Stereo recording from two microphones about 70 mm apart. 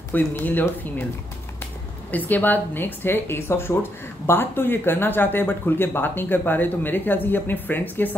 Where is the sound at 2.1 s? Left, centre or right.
Left.